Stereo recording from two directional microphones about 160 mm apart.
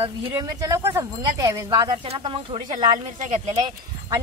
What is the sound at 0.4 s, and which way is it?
Speech, 20° right (ahead or behind).